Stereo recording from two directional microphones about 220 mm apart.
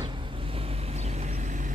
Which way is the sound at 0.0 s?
20° right (ahead or behind).